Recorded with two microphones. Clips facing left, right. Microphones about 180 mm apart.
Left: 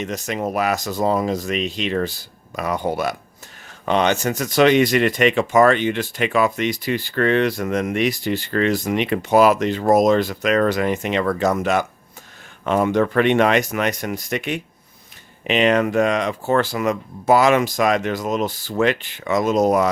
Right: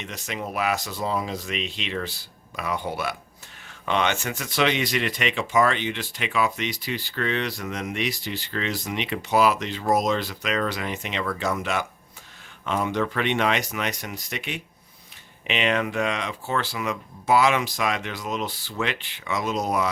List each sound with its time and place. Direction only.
0.0 s speech: 45° left (ahead or behind)